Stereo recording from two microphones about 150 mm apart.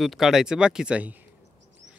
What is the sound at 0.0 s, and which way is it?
Speech, centre (ahead or behind).